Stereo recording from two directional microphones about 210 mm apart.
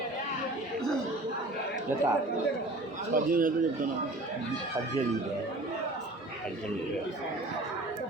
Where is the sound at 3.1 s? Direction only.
40° right (ahead or behind).